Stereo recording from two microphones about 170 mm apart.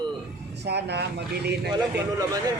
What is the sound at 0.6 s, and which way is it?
Speech, 80° right.